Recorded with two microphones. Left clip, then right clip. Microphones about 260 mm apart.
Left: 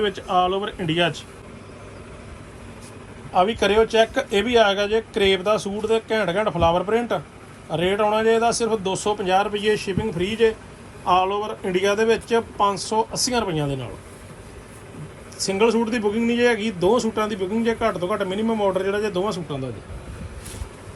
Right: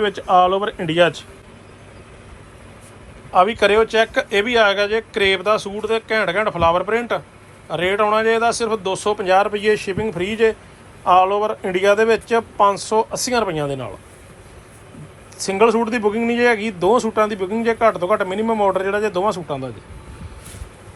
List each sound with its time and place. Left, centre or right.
0.0 s speech: centre
3.3 s speech: centre
15.4 s speech: centre